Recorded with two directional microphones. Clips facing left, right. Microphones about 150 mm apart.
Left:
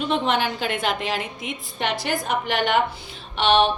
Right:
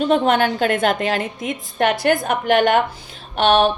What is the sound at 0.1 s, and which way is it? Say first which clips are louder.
A woman's voice: right 5 dB; 50° right (ahead or behind).